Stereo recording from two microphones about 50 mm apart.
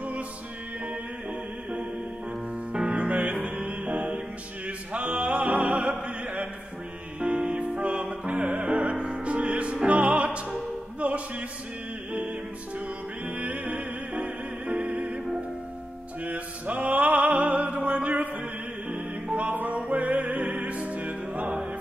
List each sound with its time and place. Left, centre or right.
2.9 s music: right
4.6 s opera: right
7.3 s music: right
16.3 s music: right
19.4 s music: right